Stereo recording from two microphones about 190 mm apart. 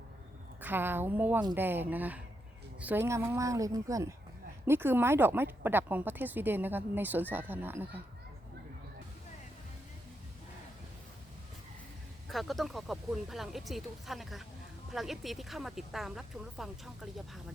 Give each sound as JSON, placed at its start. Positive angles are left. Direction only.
{"t": 0.6, "sound": "speech", "side_deg": -10}
{"t": 12.3, "sound": "speech", "side_deg": 0}